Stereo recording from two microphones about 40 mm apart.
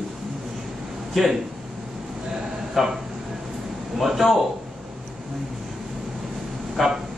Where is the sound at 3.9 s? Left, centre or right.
Centre.